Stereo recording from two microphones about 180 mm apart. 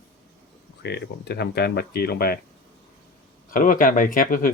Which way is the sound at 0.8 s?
65° left (ahead or behind).